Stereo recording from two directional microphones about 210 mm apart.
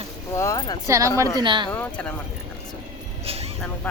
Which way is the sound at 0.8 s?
15° right (ahead or behind).